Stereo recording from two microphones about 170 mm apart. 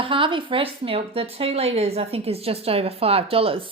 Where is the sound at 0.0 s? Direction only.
30° right (ahead or behind).